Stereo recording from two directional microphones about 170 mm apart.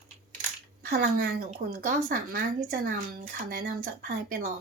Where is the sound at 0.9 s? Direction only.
65° right (ahead or behind).